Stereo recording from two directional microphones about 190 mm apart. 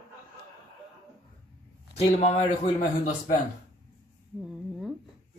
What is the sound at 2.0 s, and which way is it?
Speech, 30° left (ahead or behind).